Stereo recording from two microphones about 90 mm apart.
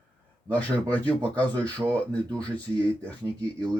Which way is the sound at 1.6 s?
45° right (ahead or behind).